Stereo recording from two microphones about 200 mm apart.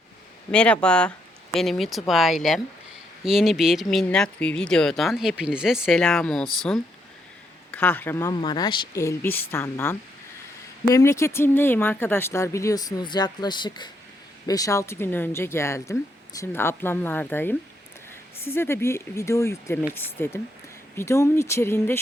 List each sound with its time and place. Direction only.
0.5 s speech: 5° left (ahead or behind)